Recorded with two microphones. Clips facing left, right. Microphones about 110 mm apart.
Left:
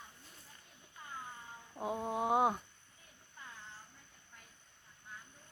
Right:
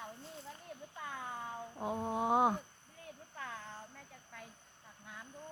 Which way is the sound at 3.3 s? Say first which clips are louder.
Right 6 dB; 90° right.